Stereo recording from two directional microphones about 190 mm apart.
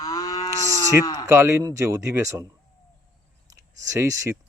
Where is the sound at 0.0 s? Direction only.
20° left (ahead or behind).